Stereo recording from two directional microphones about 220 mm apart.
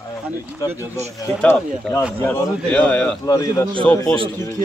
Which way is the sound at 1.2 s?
5° left (ahead or behind).